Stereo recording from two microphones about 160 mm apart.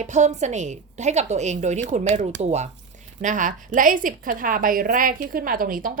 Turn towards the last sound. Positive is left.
turn(degrees=-60)  # may be behind; listen again after turning